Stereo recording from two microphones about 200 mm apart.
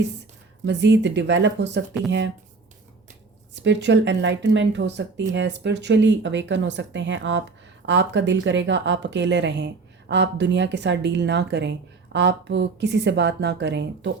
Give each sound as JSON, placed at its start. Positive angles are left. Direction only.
{"t": 0.6, "sound": "speech", "side_deg": -60}
{"t": 3.5, "sound": "speech", "side_deg": -60}